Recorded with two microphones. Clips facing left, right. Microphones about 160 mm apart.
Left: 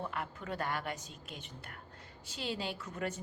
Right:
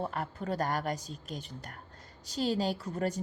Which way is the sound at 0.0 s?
40° right (ahead or behind).